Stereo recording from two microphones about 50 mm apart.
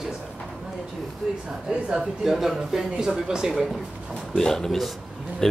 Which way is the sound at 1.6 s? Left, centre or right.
Centre.